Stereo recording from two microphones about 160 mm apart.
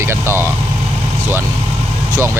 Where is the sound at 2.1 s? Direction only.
15° right (ahead or behind).